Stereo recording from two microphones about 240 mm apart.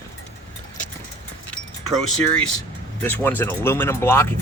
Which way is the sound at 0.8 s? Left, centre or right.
Left.